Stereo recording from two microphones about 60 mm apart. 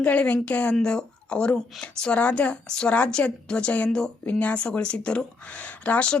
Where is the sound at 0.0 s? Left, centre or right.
Left.